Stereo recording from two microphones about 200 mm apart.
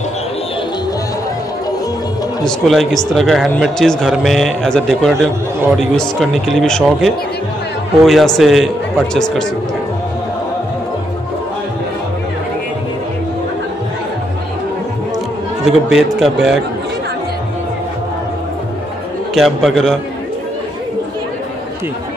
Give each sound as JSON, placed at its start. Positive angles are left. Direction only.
{"t": 2.4, "sound": "a man's voice", "side_deg": 0}
{"t": 15.6, "sound": "a man's voice", "side_deg": 0}
{"t": 19.3, "sound": "a man's voice", "side_deg": 0}